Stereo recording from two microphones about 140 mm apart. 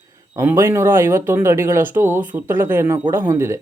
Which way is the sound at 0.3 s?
20° right (ahead or behind).